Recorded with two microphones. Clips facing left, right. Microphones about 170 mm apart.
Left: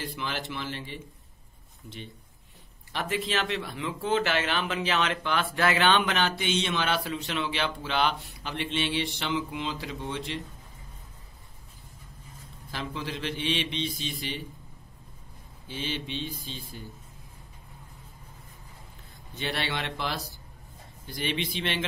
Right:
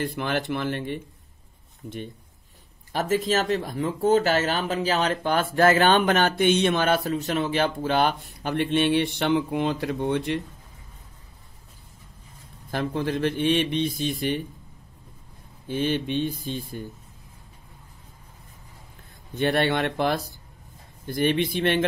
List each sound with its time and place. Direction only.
0.0 s speech: 55° right (ahead or behind)
1.8 s speech: 40° right (ahead or behind)
12.7 s speech: 50° right (ahead or behind)
15.7 s speech: 55° right (ahead or behind)
19.3 s speech: 50° right (ahead or behind)